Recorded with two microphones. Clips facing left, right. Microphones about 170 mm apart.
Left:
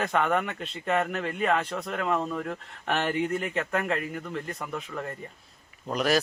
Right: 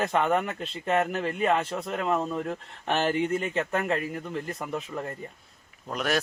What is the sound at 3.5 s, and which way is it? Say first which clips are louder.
Speech: right 1 dB; 30° right (ahead or behind).